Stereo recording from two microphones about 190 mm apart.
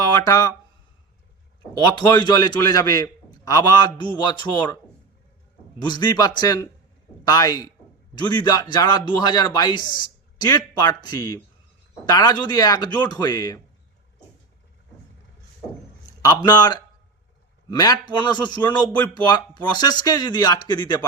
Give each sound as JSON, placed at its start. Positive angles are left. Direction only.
{"t": 0.0, "sound": "speech", "side_deg": 20}
{"t": 1.8, "sound": "a man's voice", "side_deg": 20}
{"t": 5.9, "sound": "a man's voice", "side_deg": 20}
{"t": 16.2, "sound": "a man's voice", "side_deg": 20}